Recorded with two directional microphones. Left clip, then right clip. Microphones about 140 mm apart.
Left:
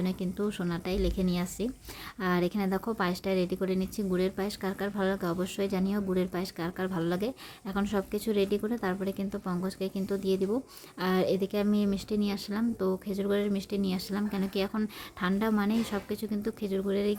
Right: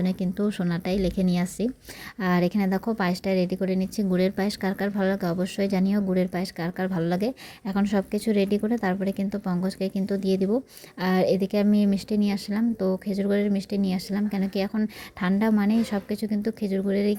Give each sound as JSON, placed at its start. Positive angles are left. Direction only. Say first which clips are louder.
{"t": 0.0, "sound": "a woman's voice", "louder": "right 5 dB", "side_deg": -25}